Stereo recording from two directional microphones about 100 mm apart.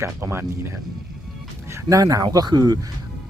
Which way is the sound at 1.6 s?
30° right (ahead or behind).